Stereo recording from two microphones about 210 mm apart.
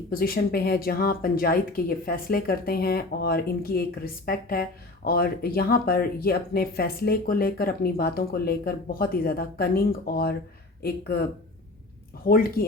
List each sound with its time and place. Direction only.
0.1 s speech: 45° left (ahead or behind)
12.2 s speech: 45° left (ahead or behind)